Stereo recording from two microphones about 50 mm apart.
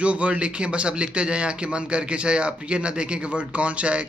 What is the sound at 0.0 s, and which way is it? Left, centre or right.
A man's voice, right.